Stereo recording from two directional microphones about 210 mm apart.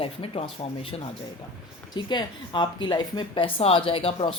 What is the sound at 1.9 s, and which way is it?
Speech, 20° left (ahead or behind).